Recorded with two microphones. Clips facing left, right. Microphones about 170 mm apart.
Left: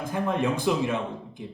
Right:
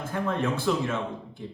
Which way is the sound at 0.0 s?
15° left (ahead or behind).